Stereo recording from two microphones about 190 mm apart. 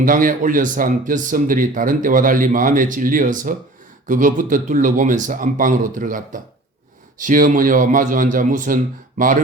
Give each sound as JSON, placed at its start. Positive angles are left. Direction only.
{"t": 0.0, "sound": "speech", "side_deg": -45}